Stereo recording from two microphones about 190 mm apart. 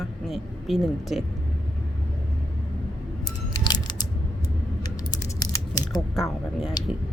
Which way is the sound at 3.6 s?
20° left (ahead or behind).